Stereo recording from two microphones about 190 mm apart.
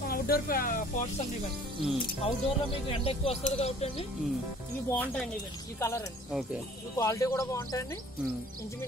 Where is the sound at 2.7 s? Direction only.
30° left (ahead or behind).